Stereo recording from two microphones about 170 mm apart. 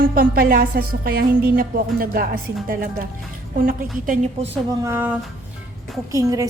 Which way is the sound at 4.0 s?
50° right (ahead or behind).